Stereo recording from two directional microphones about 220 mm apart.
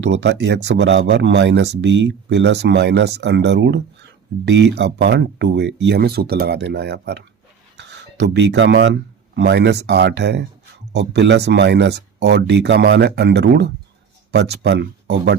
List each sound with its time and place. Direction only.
0.0 s speech: 50° right (ahead or behind)